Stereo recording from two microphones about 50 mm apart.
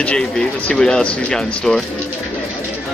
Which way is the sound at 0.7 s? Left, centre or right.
Centre.